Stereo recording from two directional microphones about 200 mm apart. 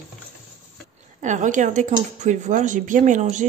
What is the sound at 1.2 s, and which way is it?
Speech, 40° right (ahead or behind).